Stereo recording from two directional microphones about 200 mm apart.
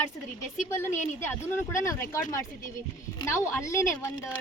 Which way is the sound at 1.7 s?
15° left (ahead or behind).